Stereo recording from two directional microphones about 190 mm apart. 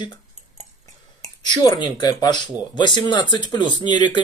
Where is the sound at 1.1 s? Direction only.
20° left (ahead or behind).